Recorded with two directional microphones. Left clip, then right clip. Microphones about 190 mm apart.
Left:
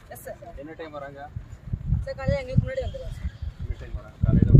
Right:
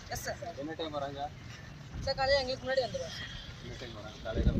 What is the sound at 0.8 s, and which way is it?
Speech, centre (ahead or behind).